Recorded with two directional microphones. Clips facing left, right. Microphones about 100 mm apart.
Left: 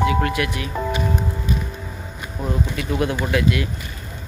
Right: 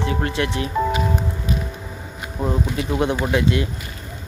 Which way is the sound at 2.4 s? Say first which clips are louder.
Right 2 dB; 25° right (ahead or behind).